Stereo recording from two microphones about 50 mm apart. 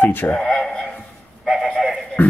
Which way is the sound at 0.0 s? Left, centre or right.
Left.